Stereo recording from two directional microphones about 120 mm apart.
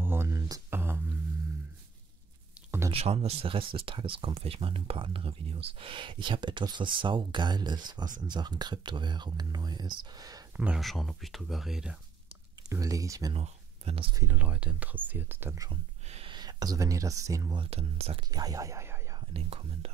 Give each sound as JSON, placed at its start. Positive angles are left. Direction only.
{"t": 0.0, "sound": "a sound", "side_deg": -20}
{"t": 2.9, "sound": "speech", "side_deg": -55}
{"t": 10.6, "sound": "speech", "side_deg": -5}
{"t": 12.6, "sound": "speech", "side_deg": -30}
{"t": 13.3, "sound": "speech", "side_deg": -55}
{"t": 14.2, "sound": "speech", "side_deg": -10}
{"t": 16.3, "sound": "speech", "side_deg": -35}
{"t": 17.6, "sound": "speech", "side_deg": -60}
{"t": 18.3, "sound": "speech", "side_deg": -30}
{"t": 19.3, "sound": "speech", "side_deg": -55}